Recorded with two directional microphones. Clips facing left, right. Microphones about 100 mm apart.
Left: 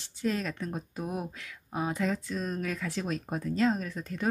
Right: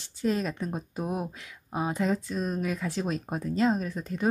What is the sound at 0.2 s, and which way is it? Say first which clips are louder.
Speech: right 3 dB; 20° right (ahead or behind).